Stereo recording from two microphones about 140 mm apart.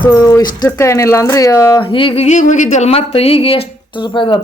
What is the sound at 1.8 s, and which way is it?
Speech, 40° left (ahead or behind).